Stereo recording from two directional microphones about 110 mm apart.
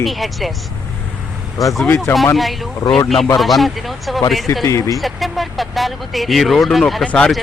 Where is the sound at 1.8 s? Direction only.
25° left (ahead or behind).